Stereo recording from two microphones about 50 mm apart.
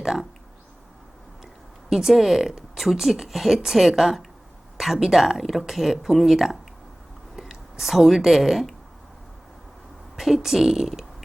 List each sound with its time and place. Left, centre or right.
0.0 s a sound: centre
1.9 s speech: centre
10.2 s speech: centre